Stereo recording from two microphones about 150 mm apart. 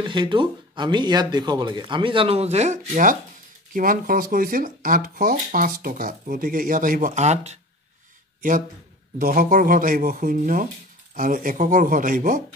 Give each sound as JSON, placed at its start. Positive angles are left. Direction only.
{"t": 0.0, "sound": "speech", "side_deg": -30}
{"t": 8.4, "sound": "speech", "side_deg": -60}